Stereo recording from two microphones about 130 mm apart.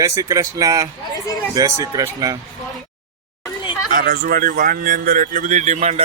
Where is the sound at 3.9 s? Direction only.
90° right.